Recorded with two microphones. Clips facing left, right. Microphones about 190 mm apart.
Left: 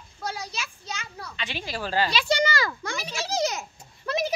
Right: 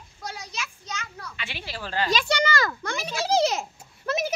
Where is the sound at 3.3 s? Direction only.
30° right (ahead or behind).